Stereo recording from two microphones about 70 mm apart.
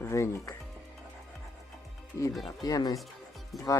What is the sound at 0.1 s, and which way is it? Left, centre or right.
Speech, left.